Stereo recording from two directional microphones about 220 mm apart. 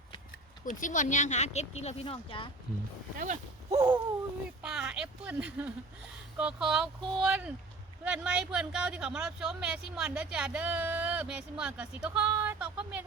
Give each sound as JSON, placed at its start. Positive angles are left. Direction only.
{"t": 0.8, "sound": "speech", "side_deg": 35}
{"t": 3.2, "sound": "speech", "side_deg": -30}
{"t": 4.6, "sound": "a woman's voice", "side_deg": -5}